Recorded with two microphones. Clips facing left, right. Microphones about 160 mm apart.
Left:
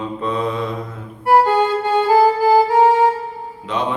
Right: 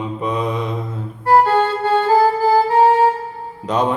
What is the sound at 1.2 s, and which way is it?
Music, 15° left (ahead or behind).